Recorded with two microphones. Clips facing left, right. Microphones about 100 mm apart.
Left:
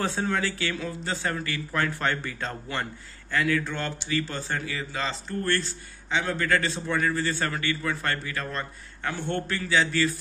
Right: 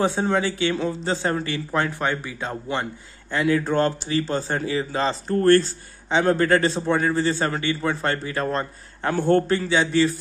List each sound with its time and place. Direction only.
0.0 s speech: 20° right (ahead or behind)
3.6 s speech: 40° right (ahead or behind)
5.3 s speech: 45° right (ahead or behind)
9.5 s speech: 30° right (ahead or behind)